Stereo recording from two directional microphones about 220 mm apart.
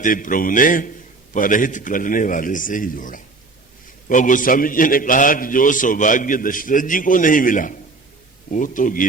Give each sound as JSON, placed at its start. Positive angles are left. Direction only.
{"t": 0.0, "sound": "a man's voice", "side_deg": 35}